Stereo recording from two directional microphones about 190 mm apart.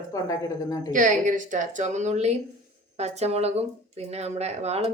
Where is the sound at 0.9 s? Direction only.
40° right (ahead or behind).